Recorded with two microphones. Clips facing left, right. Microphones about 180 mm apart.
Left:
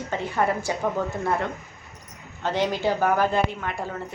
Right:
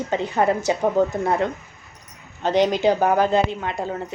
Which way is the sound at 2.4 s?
20° right (ahead or behind).